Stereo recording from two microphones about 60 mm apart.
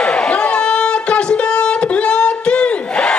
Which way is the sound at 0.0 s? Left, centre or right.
Centre.